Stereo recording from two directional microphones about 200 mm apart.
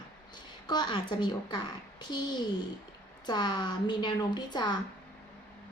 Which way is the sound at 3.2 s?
20° left (ahead or behind).